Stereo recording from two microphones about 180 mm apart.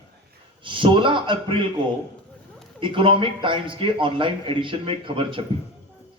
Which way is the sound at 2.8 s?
30° right (ahead or behind).